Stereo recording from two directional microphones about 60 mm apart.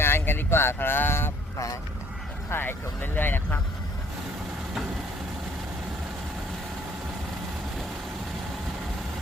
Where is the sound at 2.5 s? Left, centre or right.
Left.